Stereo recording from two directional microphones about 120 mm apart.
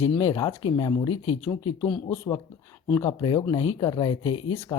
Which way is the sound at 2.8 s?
30° left (ahead or behind).